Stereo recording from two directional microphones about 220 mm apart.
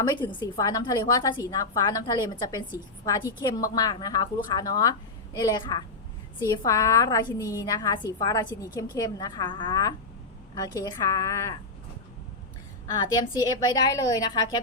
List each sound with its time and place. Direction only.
0.0 s a woman's voice: 20° left (ahead or behind)
13.0 s a woman's voice: 20° left (ahead or behind)